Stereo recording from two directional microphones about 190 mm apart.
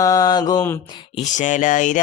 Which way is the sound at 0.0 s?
20° left (ahead or behind).